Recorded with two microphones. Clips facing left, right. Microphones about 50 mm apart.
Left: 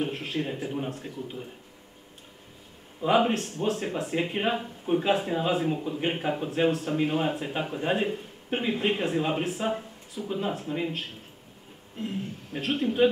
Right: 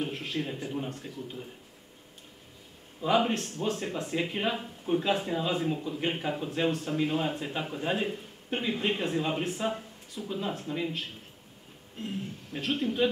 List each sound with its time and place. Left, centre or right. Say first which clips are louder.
0.0 s speech: left 3 dB; centre
3.0 s speech: left 3 dB; centre
12.0 s speech: left 3 dB; centre